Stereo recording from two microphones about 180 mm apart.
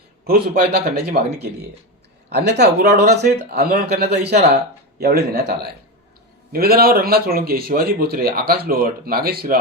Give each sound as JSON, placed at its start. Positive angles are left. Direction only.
{"t": 0.3, "sound": "a man's voice", "side_deg": -60}